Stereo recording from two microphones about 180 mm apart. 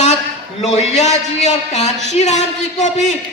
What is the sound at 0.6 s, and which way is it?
A man's voice, 40° left (ahead or behind).